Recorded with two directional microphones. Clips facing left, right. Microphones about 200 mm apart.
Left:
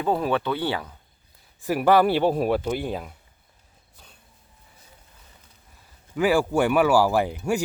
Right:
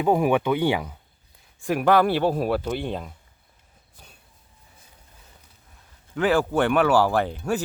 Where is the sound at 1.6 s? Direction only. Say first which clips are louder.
Left 1 dB; 5° left (ahead or behind).